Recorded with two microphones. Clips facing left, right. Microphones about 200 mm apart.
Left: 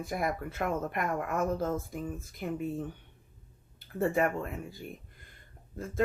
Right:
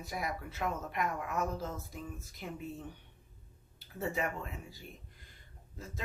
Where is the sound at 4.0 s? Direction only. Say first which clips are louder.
Left 8 dB; 55° left (ahead or behind).